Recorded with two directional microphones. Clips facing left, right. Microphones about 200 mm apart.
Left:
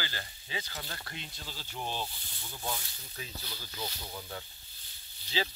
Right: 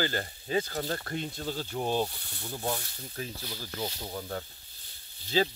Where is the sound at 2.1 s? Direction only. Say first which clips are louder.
Right 7 dB; 65° right (ahead or behind).